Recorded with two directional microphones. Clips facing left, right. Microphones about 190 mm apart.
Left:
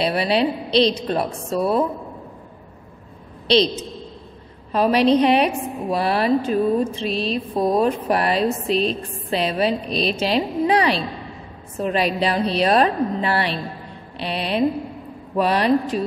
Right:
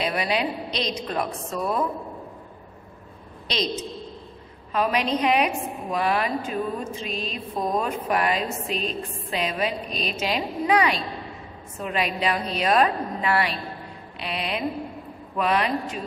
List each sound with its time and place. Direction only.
0.0 s a woman's voice: 30° left (ahead or behind)
4.7 s a woman's voice: 35° left (ahead or behind)
14.1 s music: 30° left (ahead or behind)
15.3 s a woman's voice: 35° left (ahead or behind)